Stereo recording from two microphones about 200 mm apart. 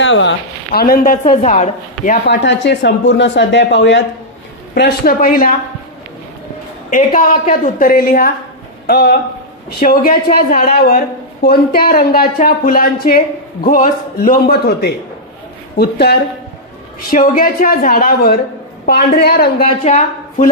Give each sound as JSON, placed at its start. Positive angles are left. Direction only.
{"t": 0.0, "sound": "a woman's voice", "side_deg": 65}
{"t": 2.2, "sound": "speech", "side_deg": 65}
{"t": 4.7, "sound": "speech", "side_deg": 50}
{"t": 6.9, "sound": "speech", "side_deg": 40}
{"t": 19.6, "sound": "a woman's voice", "side_deg": 35}